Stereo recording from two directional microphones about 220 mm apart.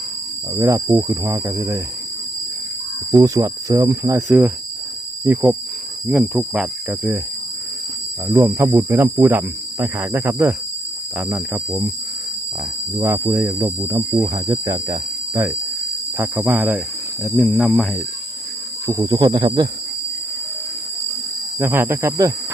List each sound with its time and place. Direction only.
0.5 s speech: 15° right (ahead or behind)
3.1 s speech: 15° right (ahead or behind)
8.3 s speech: 10° right (ahead or behind)
13.0 s speech: 15° right (ahead or behind)
17.2 s speech: 5° left (ahead or behind)
18.9 s speech: 20° right (ahead or behind)
21.6 s speech: 10° right (ahead or behind)